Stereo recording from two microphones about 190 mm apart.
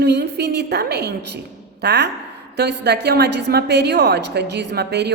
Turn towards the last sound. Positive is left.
turn(degrees=-60)  # may be behind; listen again after turning